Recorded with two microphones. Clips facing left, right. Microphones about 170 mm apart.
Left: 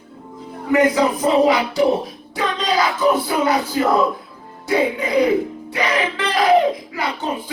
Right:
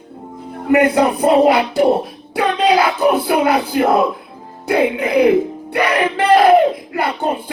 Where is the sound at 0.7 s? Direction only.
60° right (ahead or behind).